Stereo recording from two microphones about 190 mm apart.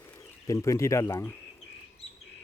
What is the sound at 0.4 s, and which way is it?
Speech, 15° left (ahead or behind).